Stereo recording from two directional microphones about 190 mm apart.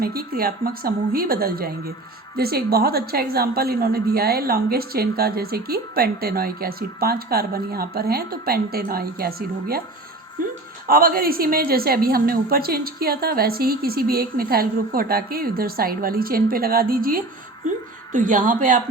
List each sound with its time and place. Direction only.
0.0 s a woman's voice: 50° right (ahead or behind)
10.8 s a woman's voice: 50° right (ahead or behind)